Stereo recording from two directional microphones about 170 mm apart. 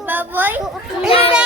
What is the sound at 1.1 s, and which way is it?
Speech, 35° left (ahead or behind).